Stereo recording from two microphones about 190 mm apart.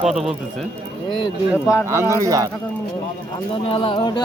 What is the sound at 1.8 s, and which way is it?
Speech, 15° right (ahead or behind).